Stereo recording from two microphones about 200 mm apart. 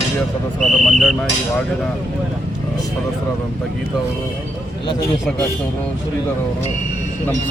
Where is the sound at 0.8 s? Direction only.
Centre (ahead or behind).